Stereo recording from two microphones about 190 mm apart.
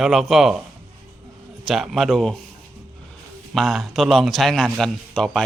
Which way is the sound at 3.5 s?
Centre (ahead or behind).